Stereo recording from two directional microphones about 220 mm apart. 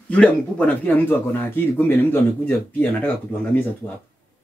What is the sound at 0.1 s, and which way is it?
Speech, 5° left (ahead or behind).